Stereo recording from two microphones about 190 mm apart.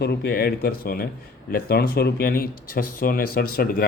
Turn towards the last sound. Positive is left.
turn(degrees=50)  # may be behind; listen again after turning